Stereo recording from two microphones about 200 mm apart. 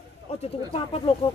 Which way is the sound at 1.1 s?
30° left (ahead or behind).